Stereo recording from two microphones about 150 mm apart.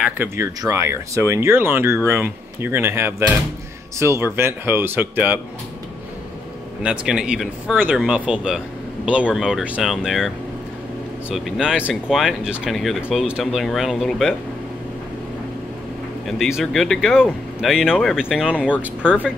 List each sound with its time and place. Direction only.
0.0 s speech: 15° right (ahead or behind)
6.8 s speech: 5° right (ahead or behind)
16.3 s speech: centre (ahead or behind)